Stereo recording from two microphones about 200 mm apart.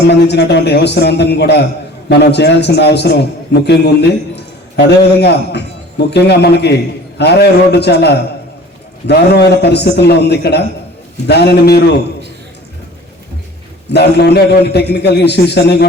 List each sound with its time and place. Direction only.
0.1 s a man's voice: 55° left (ahead or behind)
5.2 s a man's voice: 55° left (ahead or behind)
13.9 s a man's voice: 55° left (ahead or behind)